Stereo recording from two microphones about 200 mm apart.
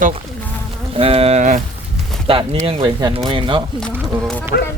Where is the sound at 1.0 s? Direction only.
30° right (ahead or behind).